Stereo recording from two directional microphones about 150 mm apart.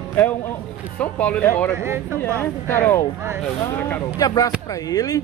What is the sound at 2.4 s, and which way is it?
Speech, 15° left (ahead or behind).